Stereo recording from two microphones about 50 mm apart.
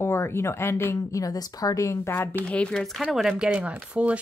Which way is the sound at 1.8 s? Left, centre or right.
Left.